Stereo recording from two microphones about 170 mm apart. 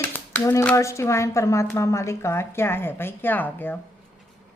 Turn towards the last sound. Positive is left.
turn(degrees=10)  # may be behind; listen again after turning